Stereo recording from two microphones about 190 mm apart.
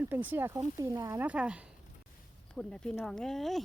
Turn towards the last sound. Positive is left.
turn(degrees=0)  # may be behind; listen again after turning